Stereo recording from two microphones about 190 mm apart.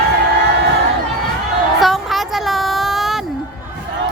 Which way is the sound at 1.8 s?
Centre (ahead or behind).